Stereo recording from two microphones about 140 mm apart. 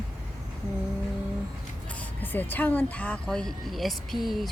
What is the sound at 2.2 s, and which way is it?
Speech, 15° left (ahead or behind).